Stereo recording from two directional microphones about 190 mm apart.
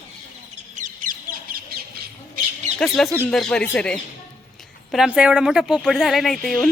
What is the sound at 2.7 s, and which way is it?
Speech, centre (ahead or behind).